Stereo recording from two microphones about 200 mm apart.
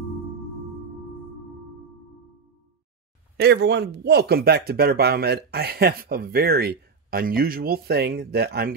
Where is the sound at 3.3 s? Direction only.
55° right (ahead or behind).